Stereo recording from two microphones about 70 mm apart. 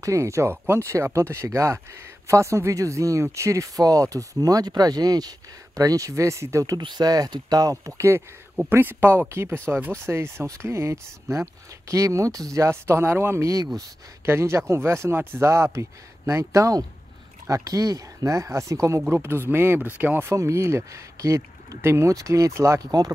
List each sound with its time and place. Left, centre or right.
0.0 s speech: right
5.8 s speech: right
7.8 s speech: right
8.6 s speech: right
20.2 s speech: right
22.8 s speech: right